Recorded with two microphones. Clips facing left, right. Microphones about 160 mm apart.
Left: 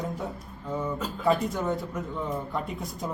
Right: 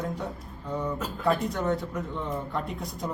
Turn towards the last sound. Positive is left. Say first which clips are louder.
# even
turn(degrees=0)  # may be behind; listen again after turning